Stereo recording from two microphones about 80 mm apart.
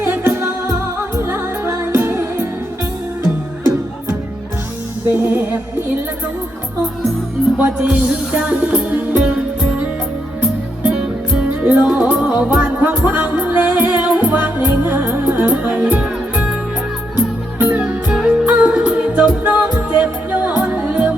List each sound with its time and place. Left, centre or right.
0.0 s music: right
5.0 s music: right
7.6 s music: centre
11.6 s music: centre
17.7 s music: centre
18.3 s music: centre